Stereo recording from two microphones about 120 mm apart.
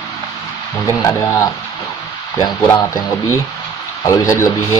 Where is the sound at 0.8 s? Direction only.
25° left (ahead or behind).